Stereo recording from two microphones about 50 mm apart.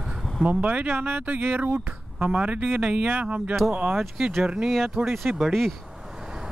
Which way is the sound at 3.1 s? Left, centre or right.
Right.